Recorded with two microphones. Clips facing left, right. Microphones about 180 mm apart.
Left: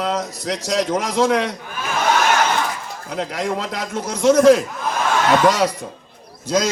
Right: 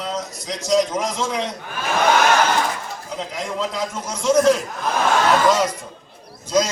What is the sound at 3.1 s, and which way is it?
A man's voice, 65° left (ahead or behind).